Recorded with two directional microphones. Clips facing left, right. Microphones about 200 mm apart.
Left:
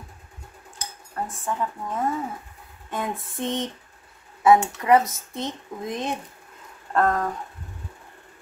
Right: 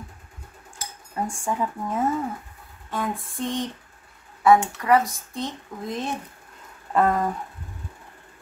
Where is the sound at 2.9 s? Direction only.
20° left (ahead or behind).